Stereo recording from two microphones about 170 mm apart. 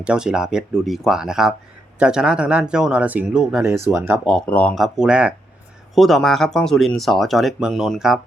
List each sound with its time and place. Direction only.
0.0 s speech: 5° right (ahead or behind)
4.3 s speech: 5° left (ahead or behind)